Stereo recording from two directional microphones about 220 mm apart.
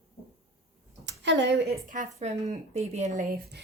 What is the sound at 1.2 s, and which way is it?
Speech, 55° right (ahead or behind).